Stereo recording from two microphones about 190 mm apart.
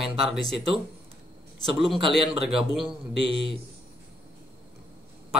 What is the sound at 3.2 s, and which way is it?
Speech, 30° right (ahead or behind).